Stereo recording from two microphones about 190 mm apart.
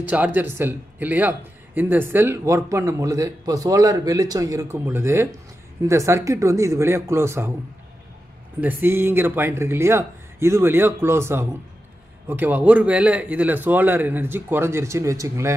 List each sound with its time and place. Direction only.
0.0 s speech: 10° right (ahead or behind)
8.5 s speech: 10° right (ahead or behind)